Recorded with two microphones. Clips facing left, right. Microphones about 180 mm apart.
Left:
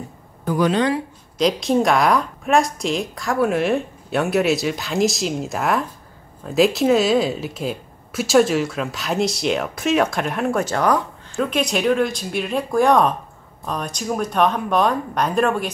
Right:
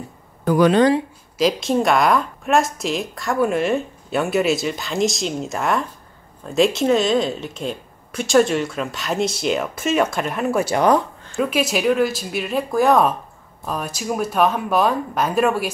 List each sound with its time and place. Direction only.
0.5 s speech: 70° right (ahead or behind)
1.4 s speech: centre (ahead or behind)